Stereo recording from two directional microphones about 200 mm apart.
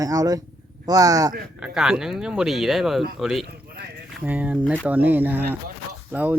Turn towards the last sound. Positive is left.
turn(degrees=-10)  # may be behind; listen again after turning